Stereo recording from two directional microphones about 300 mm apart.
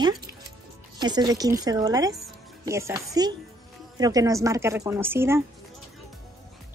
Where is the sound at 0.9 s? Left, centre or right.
Centre.